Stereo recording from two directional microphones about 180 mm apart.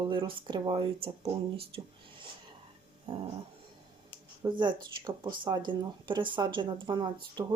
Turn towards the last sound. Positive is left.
turn(degrees=-25)  # may be behind; listen again after turning